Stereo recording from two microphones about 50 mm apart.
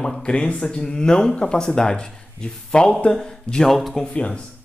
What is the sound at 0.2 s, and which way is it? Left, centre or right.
Speech, left.